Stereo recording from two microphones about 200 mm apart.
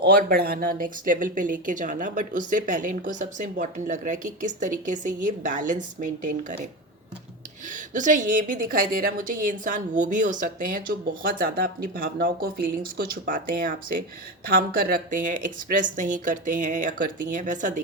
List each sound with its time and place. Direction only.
0.0 s speech: 50° right (ahead or behind)
7.7 s a woman's voice: 40° right (ahead or behind)